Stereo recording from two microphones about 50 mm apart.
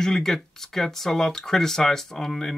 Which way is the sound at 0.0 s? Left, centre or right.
Centre.